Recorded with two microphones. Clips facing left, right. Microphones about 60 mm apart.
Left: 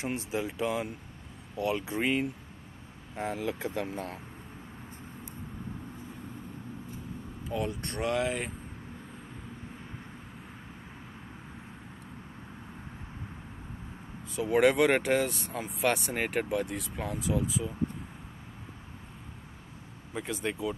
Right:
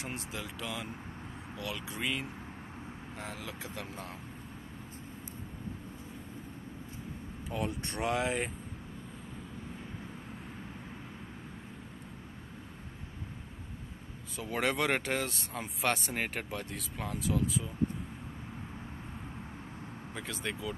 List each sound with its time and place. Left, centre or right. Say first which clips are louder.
0.0 s speech: left 8 dB; left
7.4 s speech: left 3 dB; centre
14.4 s speech: left 8 dB; centre
20.2 s speech: left 5 dB; centre